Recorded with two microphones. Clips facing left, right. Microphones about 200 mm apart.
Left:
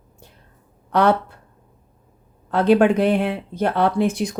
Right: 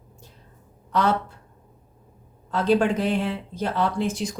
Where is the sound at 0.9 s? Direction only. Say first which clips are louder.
Left 5 dB; 60° left (ahead or behind).